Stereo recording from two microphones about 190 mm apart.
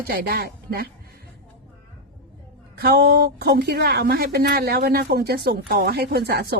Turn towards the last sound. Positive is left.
turn(degrees=-55)  # may be behind; listen again after turning